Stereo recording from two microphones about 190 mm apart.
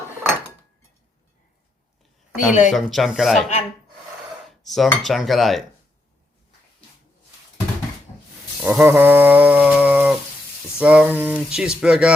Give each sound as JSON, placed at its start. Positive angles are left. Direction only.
{"t": 2.5, "sound": "speech", "side_deg": 40}
{"t": 2.7, "sound": "speech", "side_deg": 0}
{"t": 4.6, "sound": "speech", "side_deg": 0}
{"t": 8.6, "sound": "a sound", "side_deg": -10}
{"t": 10.8, "sound": "speech", "side_deg": -5}